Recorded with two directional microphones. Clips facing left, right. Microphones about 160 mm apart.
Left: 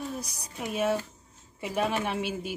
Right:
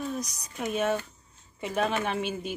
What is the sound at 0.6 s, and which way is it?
Speech, 5° left (ahead or behind).